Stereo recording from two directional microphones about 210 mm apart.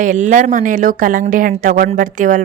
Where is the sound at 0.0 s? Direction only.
35° right (ahead or behind).